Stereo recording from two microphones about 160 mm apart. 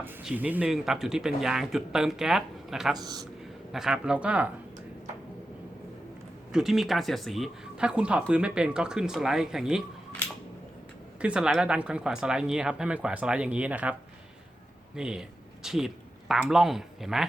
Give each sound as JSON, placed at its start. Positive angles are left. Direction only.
{"t": 0.0, "sound": "speech", "side_deg": -10}
{"t": 2.9, "sound": "a man's voice", "side_deg": -25}
{"t": 3.7, "sound": "speech", "side_deg": -5}
{"t": 6.5, "sound": "speech", "side_deg": 0}
{"t": 11.2, "sound": "speech", "side_deg": -5}
{"t": 14.9, "sound": "speech", "side_deg": -5}